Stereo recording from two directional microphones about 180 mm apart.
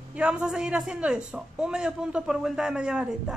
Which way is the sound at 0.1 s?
5° right (ahead or behind).